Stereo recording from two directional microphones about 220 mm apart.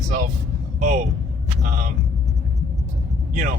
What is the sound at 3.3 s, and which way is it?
Speech, 35° right (ahead or behind).